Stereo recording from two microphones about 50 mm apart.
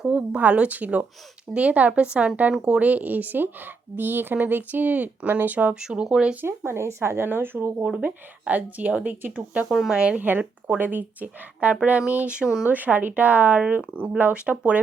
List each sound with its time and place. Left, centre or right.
0.1 s speech: right
5.8 s speech: centre
6.7 s a woman's voice: right
8.0 s speech: right
9.6 s speech: centre
10.2 s speech: right